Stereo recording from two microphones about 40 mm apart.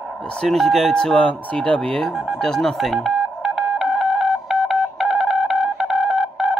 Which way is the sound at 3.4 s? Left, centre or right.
Centre.